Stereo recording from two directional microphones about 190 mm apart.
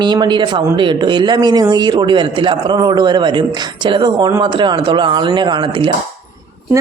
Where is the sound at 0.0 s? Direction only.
25° right (ahead or behind).